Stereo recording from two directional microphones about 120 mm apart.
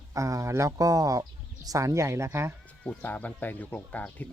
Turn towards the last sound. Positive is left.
turn(degrees=15)  # may be behind; listen again after turning